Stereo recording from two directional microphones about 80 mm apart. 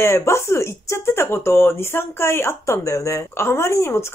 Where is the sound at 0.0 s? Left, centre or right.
Left.